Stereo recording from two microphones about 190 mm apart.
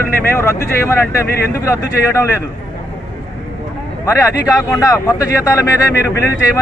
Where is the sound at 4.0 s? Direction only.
20° left (ahead or behind).